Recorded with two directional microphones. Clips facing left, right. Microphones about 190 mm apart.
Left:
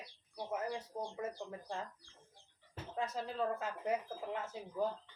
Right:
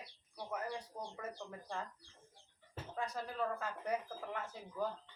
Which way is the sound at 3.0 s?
20° left (ahead or behind).